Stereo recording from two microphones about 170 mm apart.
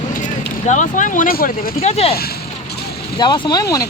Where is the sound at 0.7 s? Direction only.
45° left (ahead or behind).